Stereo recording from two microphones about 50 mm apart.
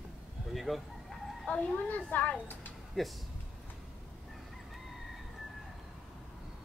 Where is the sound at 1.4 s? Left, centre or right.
Centre.